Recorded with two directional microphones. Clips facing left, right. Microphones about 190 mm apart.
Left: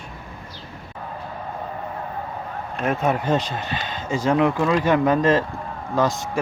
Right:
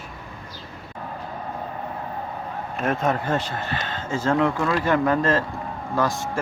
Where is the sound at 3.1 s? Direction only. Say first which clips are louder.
Left 3 dB; 15° left (ahead or behind).